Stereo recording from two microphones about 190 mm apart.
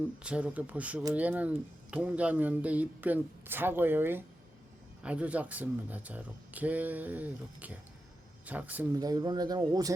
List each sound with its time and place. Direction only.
0.2 s speech: 5° right (ahead or behind)
9.0 s speech: 20° right (ahead or behind)